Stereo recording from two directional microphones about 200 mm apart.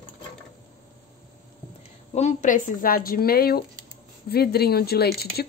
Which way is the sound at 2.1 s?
35° left (ahead or behind).